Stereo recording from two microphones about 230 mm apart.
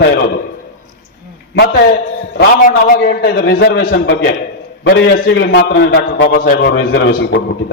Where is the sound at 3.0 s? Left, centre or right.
Left.